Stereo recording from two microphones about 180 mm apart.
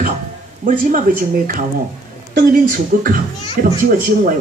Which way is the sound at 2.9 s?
50° right (ahead or behind).